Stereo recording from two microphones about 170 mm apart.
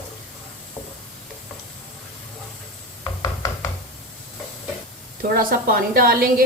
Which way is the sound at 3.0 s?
20° left (ahead or behind).